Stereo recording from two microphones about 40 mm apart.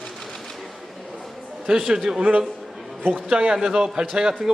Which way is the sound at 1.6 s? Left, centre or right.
Centre.